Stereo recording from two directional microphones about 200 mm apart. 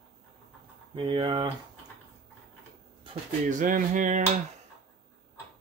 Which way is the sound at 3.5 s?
40° right (ahead or behind).